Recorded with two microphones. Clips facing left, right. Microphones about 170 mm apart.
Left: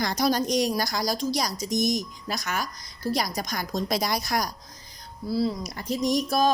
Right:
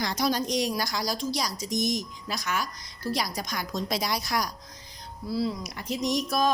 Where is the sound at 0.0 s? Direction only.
45° left (ahead or behind).